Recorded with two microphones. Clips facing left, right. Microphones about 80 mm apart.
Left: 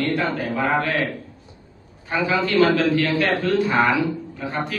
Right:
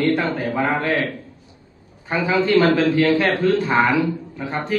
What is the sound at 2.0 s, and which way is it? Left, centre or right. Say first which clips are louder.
A man's voice: right 2 dB; right.